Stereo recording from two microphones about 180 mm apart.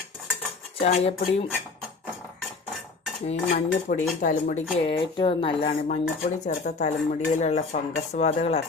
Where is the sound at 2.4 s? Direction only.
Centre (ahead or behind).